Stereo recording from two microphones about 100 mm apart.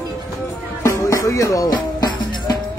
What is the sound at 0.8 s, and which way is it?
Music, 30° left (ahead or behind).